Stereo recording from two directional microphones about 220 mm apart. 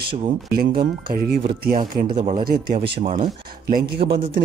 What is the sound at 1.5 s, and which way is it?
Speech, 40° right (ahead or behind).